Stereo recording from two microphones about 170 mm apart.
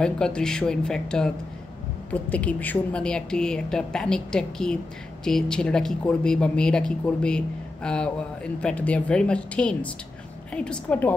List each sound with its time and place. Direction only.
0.0 s speech: 5° left (ahead or behind)